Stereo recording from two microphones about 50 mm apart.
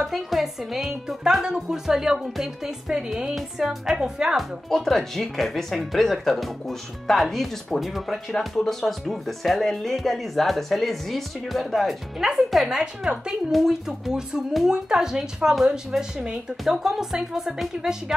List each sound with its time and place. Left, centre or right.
0.0 s speech: centre
4.4 s speech: centre
12.6 s speech: centre
13.5 s speech: centre